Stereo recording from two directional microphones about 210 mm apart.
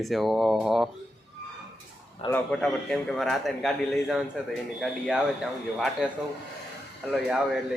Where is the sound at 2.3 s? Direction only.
5° left (ahead or behind).